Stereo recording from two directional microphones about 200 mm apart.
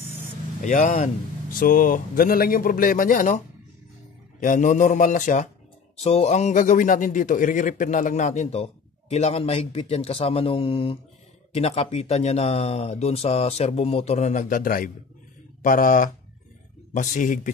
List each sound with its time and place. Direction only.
0.6 s a man's voice: 40° left (ahead or behind)